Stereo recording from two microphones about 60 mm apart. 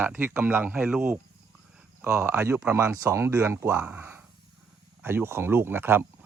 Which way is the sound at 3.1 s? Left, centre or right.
Right.